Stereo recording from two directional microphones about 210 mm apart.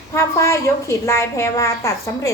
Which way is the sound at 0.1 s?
15° left (ahead or behind).